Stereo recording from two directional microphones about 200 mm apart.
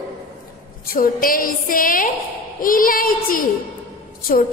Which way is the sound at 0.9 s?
45° left (ahead or behind).